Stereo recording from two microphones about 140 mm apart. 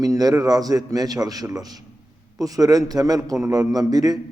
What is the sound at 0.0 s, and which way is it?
A man's voice, 25° right (ahead or behind).